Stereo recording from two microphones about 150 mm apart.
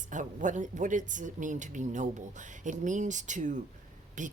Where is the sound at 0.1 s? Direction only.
55° right (ahead or behind).